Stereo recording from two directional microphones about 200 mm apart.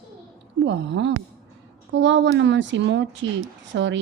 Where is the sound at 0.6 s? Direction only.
65° right (ahead or behind).